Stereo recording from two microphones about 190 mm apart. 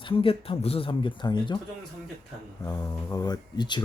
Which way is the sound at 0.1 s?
30° left (ahead or behind).